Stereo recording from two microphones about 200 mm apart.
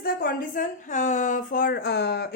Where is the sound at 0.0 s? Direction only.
45° left (ahead or behind).